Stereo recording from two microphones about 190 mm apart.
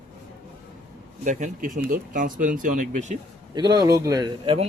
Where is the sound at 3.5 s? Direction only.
20° right (ahead or behind).